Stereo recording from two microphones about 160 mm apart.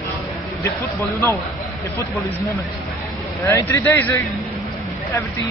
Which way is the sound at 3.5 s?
15° left (ahead or behind).